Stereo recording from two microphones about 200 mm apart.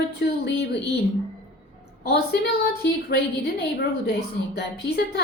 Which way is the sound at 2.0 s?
55° left (ahead or behind).